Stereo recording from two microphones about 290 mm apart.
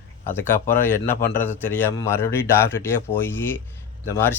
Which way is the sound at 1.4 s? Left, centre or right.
Centre.